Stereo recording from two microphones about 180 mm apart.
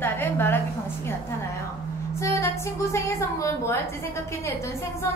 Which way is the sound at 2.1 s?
15° left (ahead or behind).